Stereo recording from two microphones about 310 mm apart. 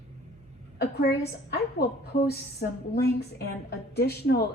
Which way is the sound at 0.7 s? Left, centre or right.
Left.